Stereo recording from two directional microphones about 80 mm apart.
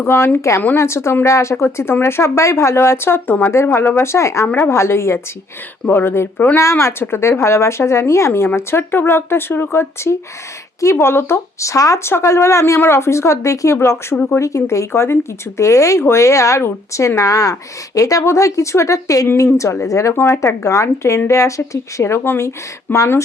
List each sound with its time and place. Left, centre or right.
0.0 s speech: left
4.4 s speech: left
4.7 s speech: left
6.6 s speech: left